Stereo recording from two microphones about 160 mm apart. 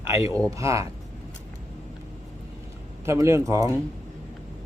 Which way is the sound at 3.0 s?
15° right (ahead or behind).